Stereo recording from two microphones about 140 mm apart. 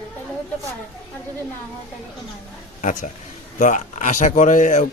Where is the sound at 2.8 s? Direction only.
65° left (ahead or behind).